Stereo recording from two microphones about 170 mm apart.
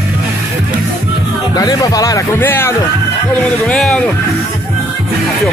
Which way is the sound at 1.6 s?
20° left (ahead or behind).